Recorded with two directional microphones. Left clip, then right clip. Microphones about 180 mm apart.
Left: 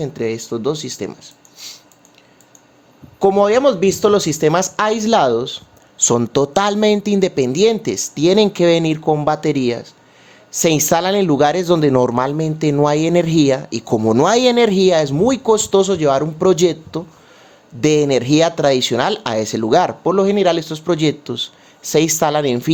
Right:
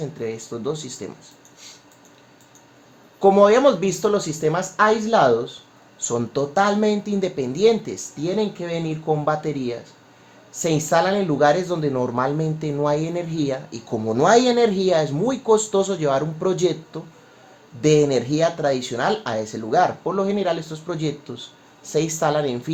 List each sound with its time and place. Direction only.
0.0 s a man's voice: 40° left (ahead or behind)
1.5 s squish: 25° left (ahead or behind)
3.2 s a man's voice: 35° left (ahead or behind)
4.1 s a man's voice: 45° left (ahead or behind)